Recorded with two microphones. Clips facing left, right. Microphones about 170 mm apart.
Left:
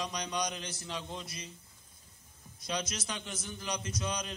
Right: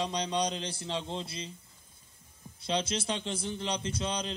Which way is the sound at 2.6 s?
30° right (ahead or behind).